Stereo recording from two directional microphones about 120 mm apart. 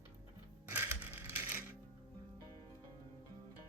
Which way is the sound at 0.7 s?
20° right (ahead or behind).